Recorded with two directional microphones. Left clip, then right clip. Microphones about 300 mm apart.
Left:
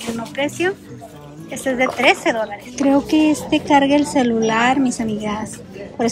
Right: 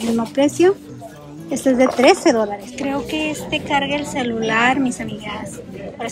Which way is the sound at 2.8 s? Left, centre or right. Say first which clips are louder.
Left 7 dB; centre.